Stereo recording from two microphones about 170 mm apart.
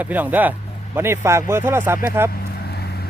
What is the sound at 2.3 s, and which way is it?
Vehicle, 70° left (ahead or behind).